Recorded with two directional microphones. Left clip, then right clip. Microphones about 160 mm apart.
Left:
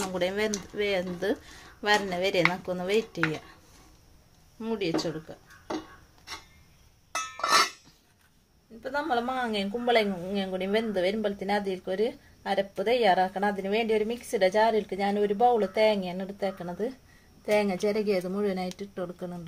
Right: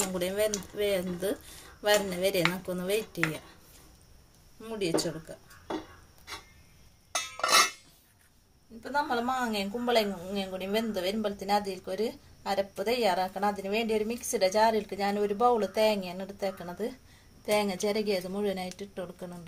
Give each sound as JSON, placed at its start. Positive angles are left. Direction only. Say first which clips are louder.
{"t": 0.1, "sound": "speech", "louder": "left 3 dB", "side_deg": 45}
{"t": 4.6, "sound": "speech", "louder": "left 1 dB", "side_deg": 55}
{"t": 8.8, "sound": "a woman's voice", "louder": "left 1 dB", "side_deg": 35}